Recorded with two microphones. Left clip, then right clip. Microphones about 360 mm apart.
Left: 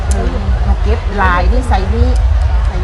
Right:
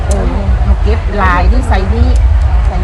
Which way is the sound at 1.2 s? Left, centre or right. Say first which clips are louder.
Right 1 dB; centre.